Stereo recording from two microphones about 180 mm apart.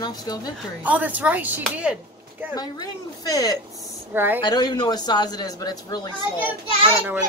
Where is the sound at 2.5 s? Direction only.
20° left (ahead or behind).